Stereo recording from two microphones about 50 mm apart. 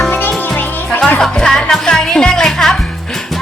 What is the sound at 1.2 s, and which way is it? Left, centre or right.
Speech, centre.